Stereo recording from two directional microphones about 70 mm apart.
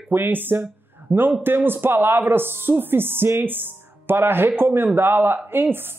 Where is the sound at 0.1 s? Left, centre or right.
Right.